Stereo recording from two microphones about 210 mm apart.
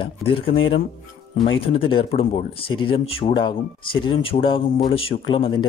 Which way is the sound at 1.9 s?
25° left (ahead or behind).